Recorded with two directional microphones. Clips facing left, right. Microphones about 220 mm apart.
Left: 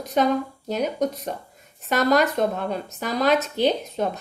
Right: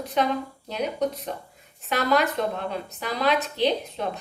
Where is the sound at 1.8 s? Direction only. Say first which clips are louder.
Left 3 dB; 45° left (ahead or behind).